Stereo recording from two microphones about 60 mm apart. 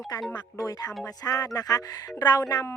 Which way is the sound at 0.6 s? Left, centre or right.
Left.